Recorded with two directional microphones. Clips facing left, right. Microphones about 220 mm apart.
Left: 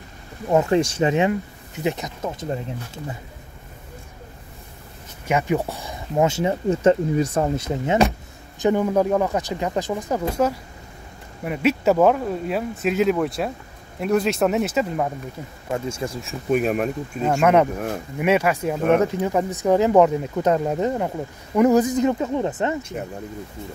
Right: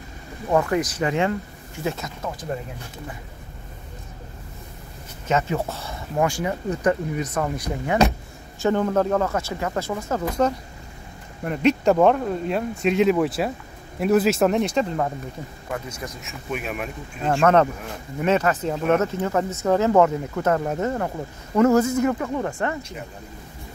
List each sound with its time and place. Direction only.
0.5 s speech: 25° left (ahead or behind)
5.3 s speech: 15° left (ahead or behind)
11.4 s speech: 5° left (ahead or behind)
15.7 s speech: 25° left (ahead or behind)
17.2 s speech: 10° left (ahead or behind)